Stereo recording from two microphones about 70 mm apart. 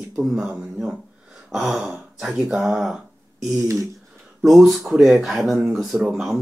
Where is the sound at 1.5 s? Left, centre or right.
Centre.